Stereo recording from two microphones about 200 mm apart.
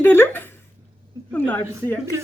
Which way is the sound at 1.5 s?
10° left (ahead or behind).